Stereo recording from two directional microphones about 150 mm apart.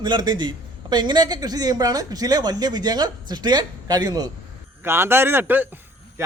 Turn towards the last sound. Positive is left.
turn(degrees=-15)  # may be behind; listen again after turning